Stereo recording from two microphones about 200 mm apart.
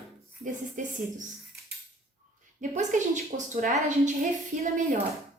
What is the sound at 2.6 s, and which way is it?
A woman's voice, 35° right (ahead or behind).